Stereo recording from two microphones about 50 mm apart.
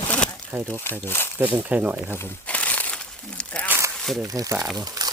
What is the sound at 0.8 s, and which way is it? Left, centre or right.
Speech, left.